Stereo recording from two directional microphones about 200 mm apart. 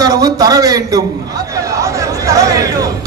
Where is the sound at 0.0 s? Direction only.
20° right (ahead or behind).